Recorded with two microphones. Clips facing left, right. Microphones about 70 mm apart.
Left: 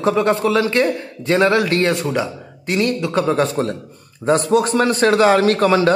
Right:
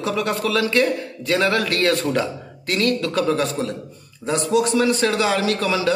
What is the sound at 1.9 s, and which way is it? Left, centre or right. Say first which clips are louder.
A man's voice: left 1 dB; centre.